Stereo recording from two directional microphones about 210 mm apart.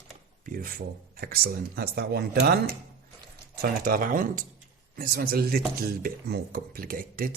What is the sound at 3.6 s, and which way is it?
Speech, 45° right (ahead or behind).